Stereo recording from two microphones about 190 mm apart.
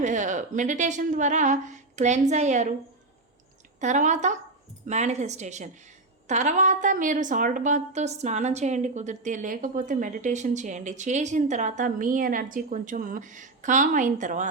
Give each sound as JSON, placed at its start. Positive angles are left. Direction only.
{"t": 0.0, "sound": "a woman's voice", "side_deg": -40}
{"t": 3.8, "sound": "a woman's voice", "side_deg": -40}